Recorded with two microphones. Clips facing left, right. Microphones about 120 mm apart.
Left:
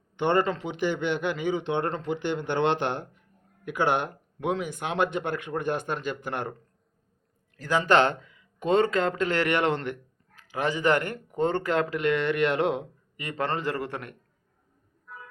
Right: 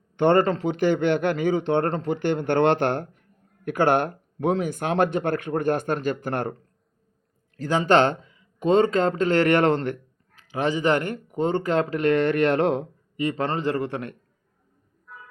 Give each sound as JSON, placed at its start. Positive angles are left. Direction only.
{"t": 0.2, "sound": "speech", "side_deg": -40}
{"t": 7.6, "sound": "speech", "side_deg": -25}
{"t": 10.3, "sound": "speech", "side_deg": -20}
{"t": 13.2, "sound": "speech", "side_deg": -20}
{"t": 15.1, "sound": "vehicle", "side_deg": 0}